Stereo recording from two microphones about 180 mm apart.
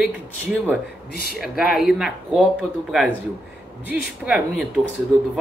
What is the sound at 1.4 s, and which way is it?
A man's voice, centre (ahead or behind).